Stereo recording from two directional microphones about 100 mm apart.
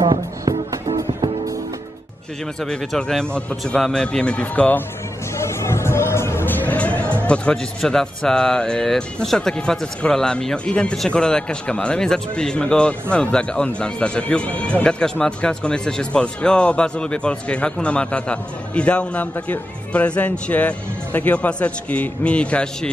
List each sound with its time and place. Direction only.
0.5 s music: 40° right (ahead or behind)
2.6 s speech: 5° left (ahead or behind)
5.4 s music: 25° left (ahead or behind)
7.3 s speech: 10° left (ahead or behind)